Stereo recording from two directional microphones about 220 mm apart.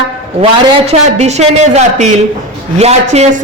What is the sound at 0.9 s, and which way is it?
A woman's voice, 30° right (ahead or behind).